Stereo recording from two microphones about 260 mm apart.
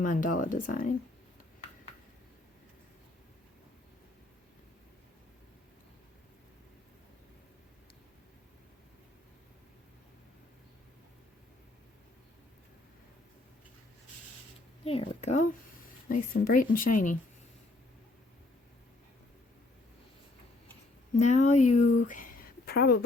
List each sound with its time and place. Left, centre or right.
0.0 s speech: left
14.8 s a child's voice: left
21.2 s speech: left